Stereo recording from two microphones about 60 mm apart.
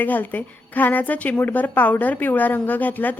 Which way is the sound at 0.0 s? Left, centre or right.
Left.